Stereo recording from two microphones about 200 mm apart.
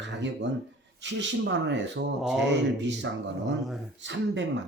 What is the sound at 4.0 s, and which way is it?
Speech, 65° right (ahead or behind).